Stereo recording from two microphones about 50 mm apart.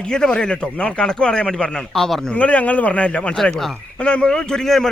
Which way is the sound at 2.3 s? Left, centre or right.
Left.